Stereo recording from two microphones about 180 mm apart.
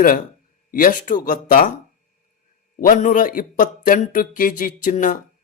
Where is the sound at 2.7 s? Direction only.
50° left (ahead or behind).